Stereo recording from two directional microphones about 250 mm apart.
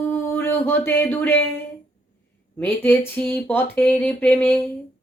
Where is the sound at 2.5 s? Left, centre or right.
Centre.